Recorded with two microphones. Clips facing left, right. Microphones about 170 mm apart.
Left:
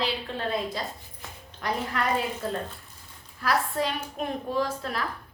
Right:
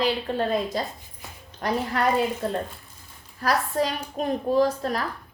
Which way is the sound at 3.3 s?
40° right (ahead or behind).